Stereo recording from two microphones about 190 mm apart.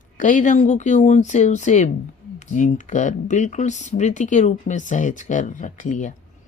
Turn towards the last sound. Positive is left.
turn(degrees=40)  # may be behind; listen again after turning